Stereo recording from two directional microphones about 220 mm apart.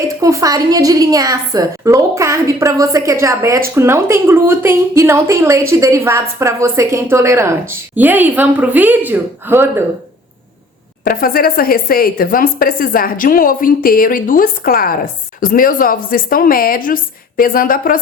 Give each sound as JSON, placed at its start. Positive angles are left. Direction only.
{"t": 0.2, "sound": "a woman's voice", "side_deg": -15}
{"t": 11.0, "sound": "speech", "side_deg": 40}